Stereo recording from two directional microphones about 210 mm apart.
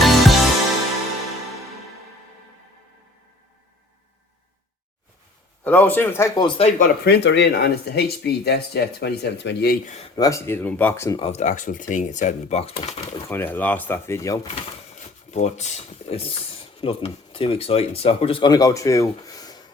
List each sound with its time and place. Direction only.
0.0 s music: centre (ahead or behind)
5.6 s speech: 10° left (ahead or behind)
6.7 s speech: 40° left (ahead or behind); by 9.7 s 55° left (ahead or behind)
9.8 s speech: 30° left (ahead or behind)
10.2 s speech: 15° left (ahead or behind)
11.2 s speech: 30° left (ahead or behind)
13.2 s speech: 10° left (ahead or behind)
15.3 s speech: 35° left (ahead or behind); by 19.6 s 20° left (ahead or behind)